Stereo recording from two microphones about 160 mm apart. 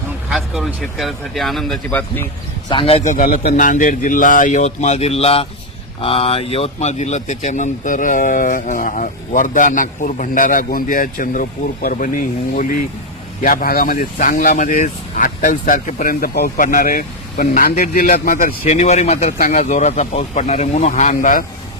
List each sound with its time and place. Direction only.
0.3 s speech: centre (ahead or behind)
2.6 s speech: 35° left (ahead or behind); by 16.6 s 75° left (ahead or behind)
16.6 s speech: 60° left (ahead or behind)